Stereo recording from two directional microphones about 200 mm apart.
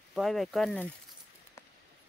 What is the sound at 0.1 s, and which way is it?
Speech, centre (ahead or behind).